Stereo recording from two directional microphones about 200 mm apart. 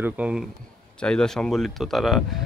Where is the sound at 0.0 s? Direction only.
5° right (ahead or behind).